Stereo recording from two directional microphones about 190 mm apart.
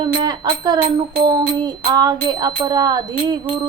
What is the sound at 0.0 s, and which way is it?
A woman's voice, 20° right (ahead or behind).